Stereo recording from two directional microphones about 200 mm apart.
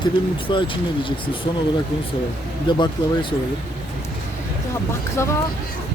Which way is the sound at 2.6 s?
25° left (ahead or behind).